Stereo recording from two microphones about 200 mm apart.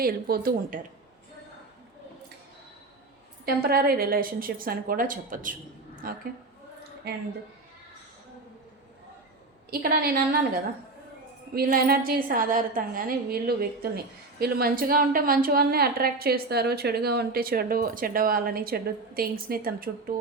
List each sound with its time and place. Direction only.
0.0 s a woman's voice: 50° right (ahead or behind)
3.4 s a woman's voice: 50° right (ahead or behind)
9.6 s a woman's voice: 50° right (ahead or behind)
11.5 s a woman's voice: 45° right (ahead or behind)